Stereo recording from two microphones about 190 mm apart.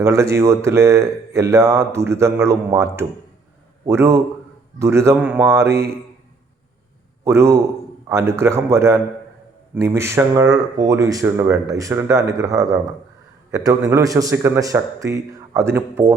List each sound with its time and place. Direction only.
0.0 s speech: 15° right (ahead or behind)
7.3 s a man's voice: 15° right (ahead or behind)